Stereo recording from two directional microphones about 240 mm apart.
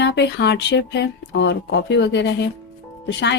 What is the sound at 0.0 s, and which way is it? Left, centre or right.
A woman's voice, left.